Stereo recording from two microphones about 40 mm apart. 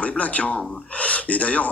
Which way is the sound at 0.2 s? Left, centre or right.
Left.